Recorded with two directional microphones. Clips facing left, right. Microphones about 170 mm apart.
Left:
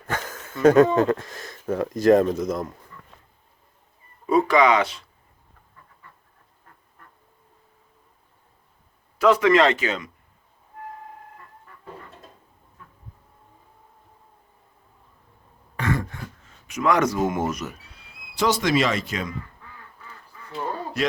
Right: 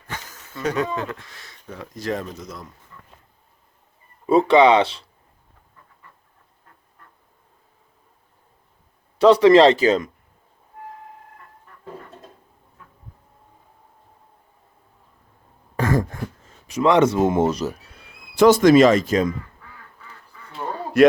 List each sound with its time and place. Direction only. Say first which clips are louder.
0.1 s a sound: left 6 dB; 55° left (ahead or behind)
0.6 s speech: left 9 dB; 50° left (ahead or behind)
4.3 s speech: right 4 dB; 30° right (ahead or behind)
9.1 s speech: right 5 dB; 30° right (ahead or behind)
15.7 s throat clearing: right 5 dB; 40° right (ahead or behind)
16.6 s speech: right 5 dB; 30° right (ahead or behind)
17.9 s speech: right 10 dB; 50° right (ahead or behind)
21.0 s speech: right 12 dB; 60° right (ahead or behind)